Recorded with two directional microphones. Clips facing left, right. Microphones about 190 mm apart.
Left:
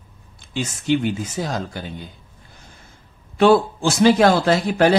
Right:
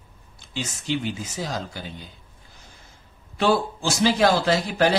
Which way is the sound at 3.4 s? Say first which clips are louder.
Left 7 dB; 60° left (ahead or behind).